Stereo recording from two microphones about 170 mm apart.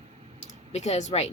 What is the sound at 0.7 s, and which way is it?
Speech, 40° left (ahead or behind).